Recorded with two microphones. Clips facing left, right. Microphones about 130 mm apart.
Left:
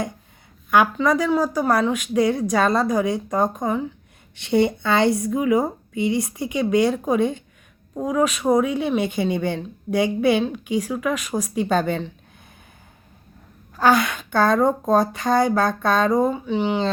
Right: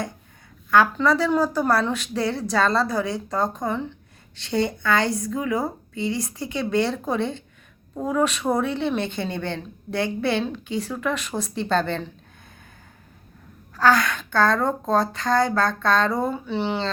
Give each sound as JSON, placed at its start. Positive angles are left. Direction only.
{"t": 0.7, "sound": "a woman's voice", "side_deg": 20}
{"t": 3.7, "sound": "a woman's voice", "side_deg": 5}
{"t": 4.4, "sound": "a woman's voice", "side_deg": 20}
{"t": 13.7, "sound": "a woman's voice", "side_deg": 15}